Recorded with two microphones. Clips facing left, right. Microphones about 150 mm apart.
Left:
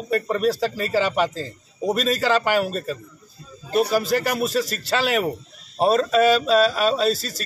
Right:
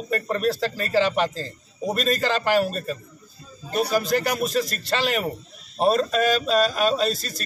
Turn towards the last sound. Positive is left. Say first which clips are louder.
# left 2 dB
turn(degrees=5)  # may be behind; listen again after turning